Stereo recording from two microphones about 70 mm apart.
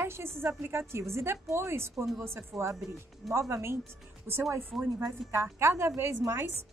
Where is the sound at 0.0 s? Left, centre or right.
Right.